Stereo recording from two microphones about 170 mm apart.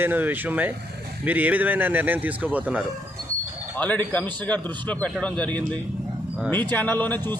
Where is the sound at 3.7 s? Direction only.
10° left (ahead or behind).